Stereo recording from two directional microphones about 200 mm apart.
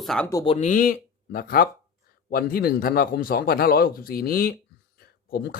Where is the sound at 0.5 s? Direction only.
40° left (ahead or behind).